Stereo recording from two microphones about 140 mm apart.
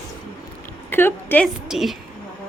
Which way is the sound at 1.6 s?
Centre (ahead or behind).